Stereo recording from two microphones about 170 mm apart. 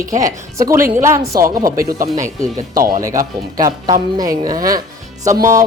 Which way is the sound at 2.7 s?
55° right (ahead or behind).